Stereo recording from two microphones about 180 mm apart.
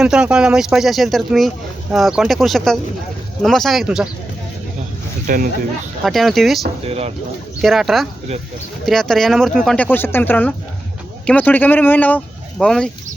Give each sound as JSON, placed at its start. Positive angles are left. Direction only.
{"t": 0.0, "sound": "speech", "side_deg": -5}
{"t": 5.2, "sound": "speech", "side_deg": -50}
{"t": 6.0, "sound": "speech", "side_deg": 0}
{"t": 6.8, "sound": "speech", "side_deg": -35}
{"t": 7.6, "sound": "speech", "side_deg": 0}